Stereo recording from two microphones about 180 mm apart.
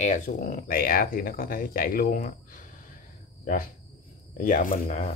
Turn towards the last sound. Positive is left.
turn(degrees=40)  # may be behind; listen again after turning